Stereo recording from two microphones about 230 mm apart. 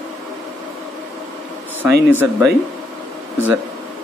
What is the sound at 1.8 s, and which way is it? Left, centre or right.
Speech, centre.